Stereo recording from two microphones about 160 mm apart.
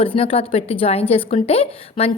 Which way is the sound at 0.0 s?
35° left (ahead or behind).